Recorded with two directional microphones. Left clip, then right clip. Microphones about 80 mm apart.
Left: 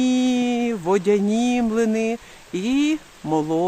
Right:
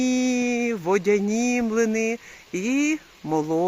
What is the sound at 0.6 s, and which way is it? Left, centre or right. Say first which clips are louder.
Speech: left 2 dB; centre.